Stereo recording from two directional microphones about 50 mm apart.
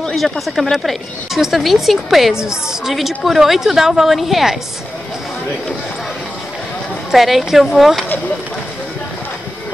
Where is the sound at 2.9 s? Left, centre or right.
Centre.